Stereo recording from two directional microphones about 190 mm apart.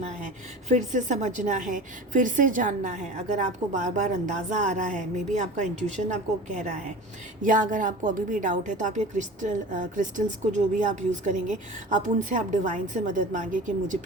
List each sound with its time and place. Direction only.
0.0 s a woman's voice: 40° right (ahead or behind)